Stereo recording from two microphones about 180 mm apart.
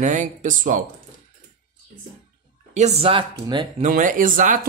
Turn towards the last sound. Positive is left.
turn(degrees=-50)  # may be behind; listen again after turning